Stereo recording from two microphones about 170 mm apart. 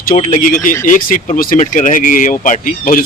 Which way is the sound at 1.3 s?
55° left (ahead or behind).